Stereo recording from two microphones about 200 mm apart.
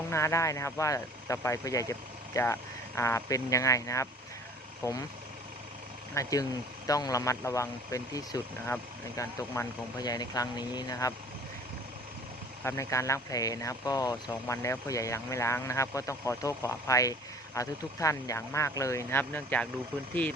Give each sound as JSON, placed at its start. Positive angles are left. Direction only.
{"t": 0.1, "sound": "speech", "side_deg": 15}
{"t": 6.2, "sound": "speech", "side_deg": 15}
{"t": 12.6, "sound": "speech", "side_deg": 15}